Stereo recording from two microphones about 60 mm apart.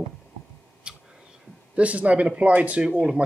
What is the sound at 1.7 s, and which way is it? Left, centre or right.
Speech, right.